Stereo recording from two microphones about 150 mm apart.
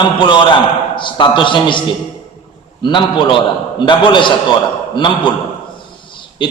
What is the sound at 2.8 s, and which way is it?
A man's voice, 30° left (ahead or behind).